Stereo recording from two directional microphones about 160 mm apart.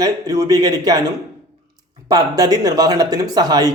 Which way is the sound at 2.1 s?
25° right (ahead or behind).